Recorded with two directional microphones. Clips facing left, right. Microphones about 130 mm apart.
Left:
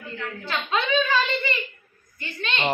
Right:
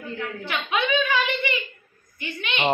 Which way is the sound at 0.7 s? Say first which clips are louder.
Even; 15° right (ahead or behind).